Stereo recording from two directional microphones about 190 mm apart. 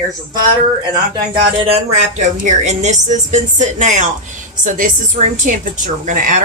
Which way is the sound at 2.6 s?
40° right (ahead or behind).